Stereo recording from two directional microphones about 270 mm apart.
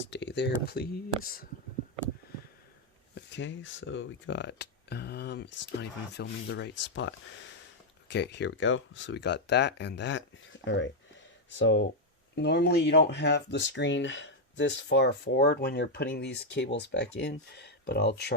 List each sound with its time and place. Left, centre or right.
0.1 s speech: left
3.2 s speech: left